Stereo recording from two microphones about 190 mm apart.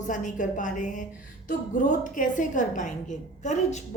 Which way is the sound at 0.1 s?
40° left (ahead or behind).